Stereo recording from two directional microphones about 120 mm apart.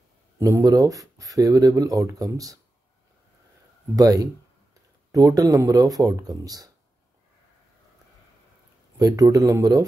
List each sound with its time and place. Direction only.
0.4 s speech: 25° right (ahead or behind)
3.9 s speech: 30° right (ahead or behind)
8.9 s speech: 30° right (ahead or behind)